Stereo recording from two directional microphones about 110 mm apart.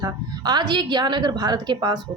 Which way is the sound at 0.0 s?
40° right (ahead or behind).